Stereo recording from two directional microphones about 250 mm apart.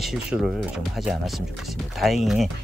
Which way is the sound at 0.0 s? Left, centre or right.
Centre.